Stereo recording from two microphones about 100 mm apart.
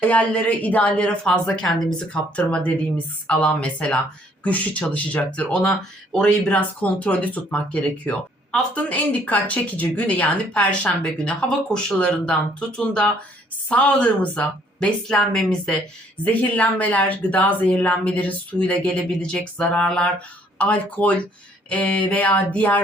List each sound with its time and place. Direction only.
0.0 s speech: 15° left (ahead or behind)